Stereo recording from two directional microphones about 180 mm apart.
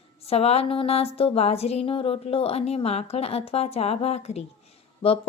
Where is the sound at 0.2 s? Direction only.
35° left (ahead or behind).